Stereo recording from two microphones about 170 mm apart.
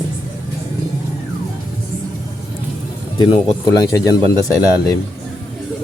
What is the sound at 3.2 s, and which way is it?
Speech, 30° left (ahead or behind).